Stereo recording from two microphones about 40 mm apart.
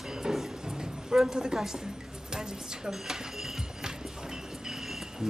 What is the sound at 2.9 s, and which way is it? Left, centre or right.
Music, centre.